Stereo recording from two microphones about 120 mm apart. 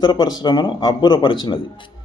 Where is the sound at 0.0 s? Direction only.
35° left (ahead or behind).